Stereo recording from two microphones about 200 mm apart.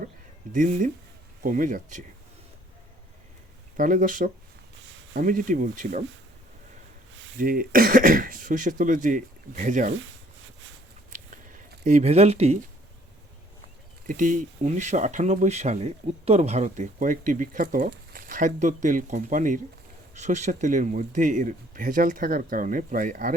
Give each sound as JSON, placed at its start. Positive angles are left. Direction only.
{"t": 0.5, "sound": "speech", "side_deg": -40}
{"t": 3.8, "sound": "speech", "side_deg": -40}
{"t": 7.3, "sound": "speech", "side_deg": -45}
{"t": 11.1, "sound": "a sound", "side_deg": -40}
{"t": 14.1, "sound": "speech", "side_deg": -40}